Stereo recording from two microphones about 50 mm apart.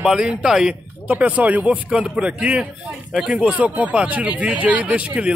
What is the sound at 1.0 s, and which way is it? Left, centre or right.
Speech, right.